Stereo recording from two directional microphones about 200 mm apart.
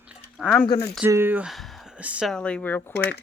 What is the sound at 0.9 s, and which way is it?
Speech, 10° right (ahead or behind).